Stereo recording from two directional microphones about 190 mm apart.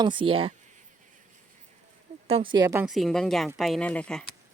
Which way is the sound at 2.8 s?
Centre (ahead or behind).